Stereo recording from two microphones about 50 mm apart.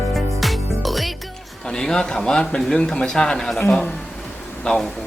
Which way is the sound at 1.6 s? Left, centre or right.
Centre.